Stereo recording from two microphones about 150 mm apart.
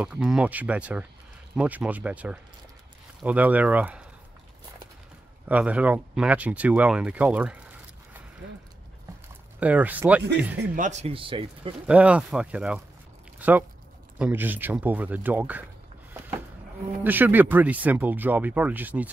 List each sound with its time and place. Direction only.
0.0 s speech: 5° right (ahead or behind)
5.5 s speech: 10° right (ahead or behind)
9.6 s speech: 10° right (ahead or behind)
10.6 s speech: 60° right (ahead or behind); by 11.7 s 35° right (ahead or behind)
11.9 s speech: 10° right (ahead or behind)
17.0 s speech: 15° right (ahead or behind)